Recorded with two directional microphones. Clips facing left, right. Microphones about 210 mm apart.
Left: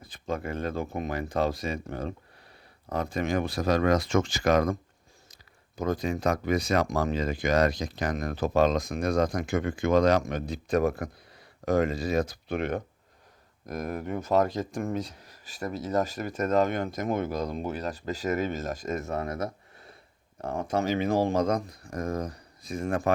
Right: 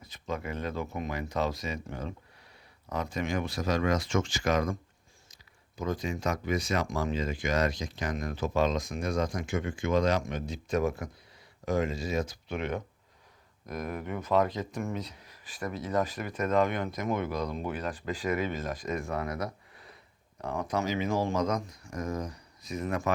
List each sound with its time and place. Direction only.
0.1 s speech: 50° left (ahead or behind)
3.9 s speech: 35° left (ahead or behind)
6.2 s speech: 55° left (ahead or behind)
6.5 s speech: 35° left (ahead or behind)
10.8 s speech: 60° left (ahead or behind)
19.0 s speech: 25° left (ahead or behind)
20.4 s speech: 50° left (ahead or behind)
20.7 s speech: 30° left (ahead or behind)
21.9 s speech: 55° left (ahead or behind)